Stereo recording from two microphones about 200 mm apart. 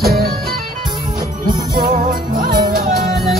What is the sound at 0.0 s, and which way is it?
Music, 50° right (ahead or behind).